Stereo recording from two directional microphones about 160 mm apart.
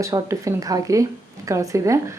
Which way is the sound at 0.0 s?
20° right (ahead or behind).